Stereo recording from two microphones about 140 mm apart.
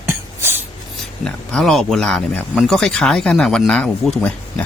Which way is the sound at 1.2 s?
5° left (ahead or behind).